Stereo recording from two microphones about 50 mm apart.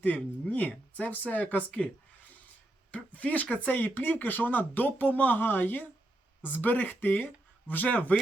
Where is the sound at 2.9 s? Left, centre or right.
Left.